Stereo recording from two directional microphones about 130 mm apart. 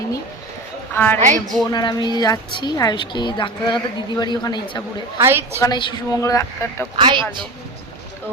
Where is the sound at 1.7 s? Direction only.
35° left (ahead or behind).